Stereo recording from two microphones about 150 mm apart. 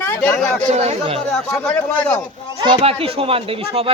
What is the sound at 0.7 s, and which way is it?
Speech, 45° right (ahead or behind).